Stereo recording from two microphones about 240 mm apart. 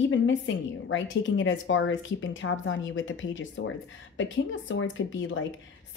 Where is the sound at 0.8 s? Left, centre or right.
Left.